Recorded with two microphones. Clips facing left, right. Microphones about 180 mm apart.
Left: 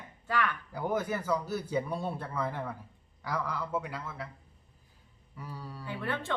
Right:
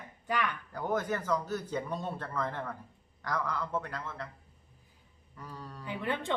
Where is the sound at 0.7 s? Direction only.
10° left (ahead or behind).